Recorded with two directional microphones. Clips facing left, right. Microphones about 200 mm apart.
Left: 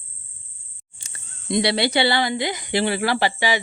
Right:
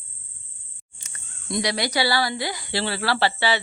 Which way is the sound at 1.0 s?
25° left (ahead or behind).